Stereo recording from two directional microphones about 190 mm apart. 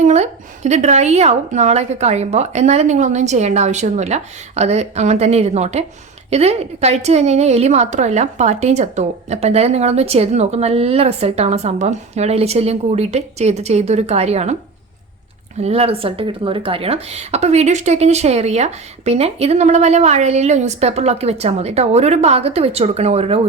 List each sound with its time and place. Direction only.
0.0 s a woman's voice: 35° right (ahead or behind)
15.6 s a woman's voice: 30° right (ahead or behind)